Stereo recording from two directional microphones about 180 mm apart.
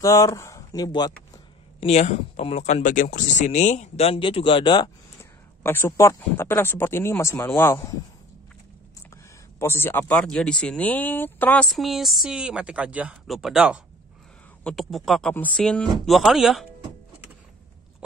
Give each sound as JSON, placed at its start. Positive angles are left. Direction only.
{"t": 0.0, "sound": "speech", "side_deg": 20}
{"t": 1.8, "sound": "speech", "side_deg": 35}
{"t": 5.6, "sound": "speech", "side_deg": 10}
{"t": 9.1, "sound": "speech", "side_deg": 15}